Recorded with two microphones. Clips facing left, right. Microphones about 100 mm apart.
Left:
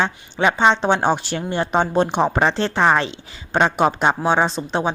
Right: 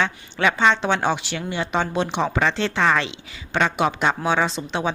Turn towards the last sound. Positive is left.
turn(degrees=40)  # may be behind; listen again after turning